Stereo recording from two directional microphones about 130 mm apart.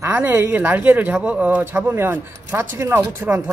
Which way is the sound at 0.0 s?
15° right (ahead or behind).